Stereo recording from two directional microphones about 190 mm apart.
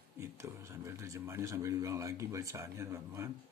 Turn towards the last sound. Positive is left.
turn(degrees=-15)  # may be behind; listen again after turning